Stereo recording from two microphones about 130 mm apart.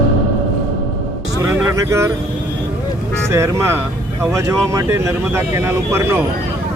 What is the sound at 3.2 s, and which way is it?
Speech, 20° right (ahead or behind).